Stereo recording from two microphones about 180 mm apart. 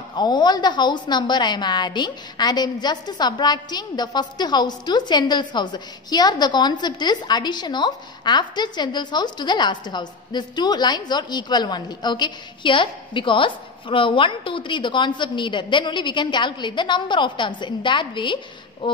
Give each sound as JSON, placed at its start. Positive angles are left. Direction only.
{"t": 0.1, "sound": "a woman's voice", "side_deg": 25}